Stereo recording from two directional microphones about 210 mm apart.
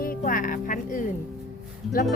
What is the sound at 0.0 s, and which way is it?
Speech, 40° left (ahead or behind).